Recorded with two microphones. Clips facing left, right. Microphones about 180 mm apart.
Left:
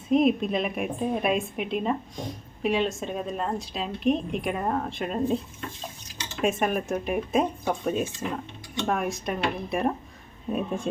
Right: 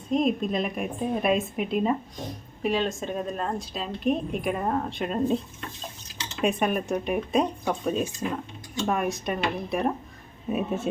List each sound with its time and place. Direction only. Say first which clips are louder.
0.1 s a woman's voice: left 3 dB; 5° left (ahead or behind)
6.4 s a woman's voice: even; centre (ahead or behind)